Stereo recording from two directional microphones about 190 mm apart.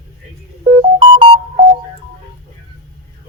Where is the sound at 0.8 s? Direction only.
25° right (ahead or behind).